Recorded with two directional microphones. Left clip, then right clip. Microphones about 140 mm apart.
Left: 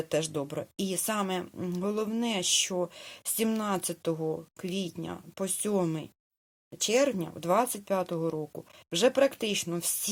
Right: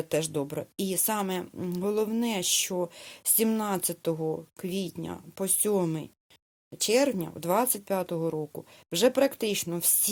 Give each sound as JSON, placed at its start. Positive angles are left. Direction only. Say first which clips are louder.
{"t": 0.1, "sound": "a woman's voice", "louder": "right 2 dB", "side_deg": -35}